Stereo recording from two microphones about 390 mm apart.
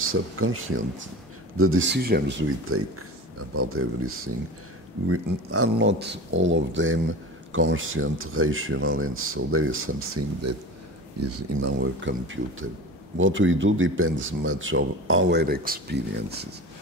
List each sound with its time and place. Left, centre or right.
0.1 s speech: right